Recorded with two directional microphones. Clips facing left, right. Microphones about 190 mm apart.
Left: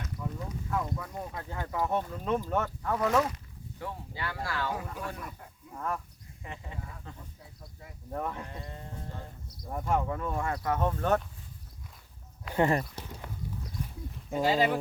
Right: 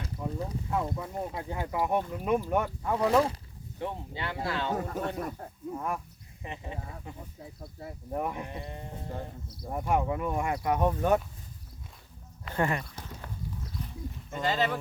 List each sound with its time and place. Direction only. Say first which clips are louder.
0.0 s speech: right 3 dB; 30° right (ahead or behind); by 3.0 s 15° right (ahead or behind)
3.0 s speech: right 3 dB; 30° right (ahead or behind)
4.7 s speech: right 5 dB; 45° right (ahead or behind)
5.7 s speech: even; 15° right (ahead or behind)
7.8 s speech: right 10 dB; 35° right (ahead or behind)
8.1 s speech: right 2 dB; 15° right (ahead or behind)
9.7 s speech: right 2 dB; 15° right (ahead or behind)
12.5 s speech: left 3 dB; 25° left (ahead or behind)
14.3 s speech: left 3 dB; 5° left (ahead or behind)